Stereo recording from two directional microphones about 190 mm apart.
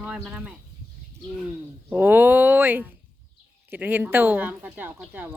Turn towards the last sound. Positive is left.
turn(degrees=-10)  # may be behind; listen again after turning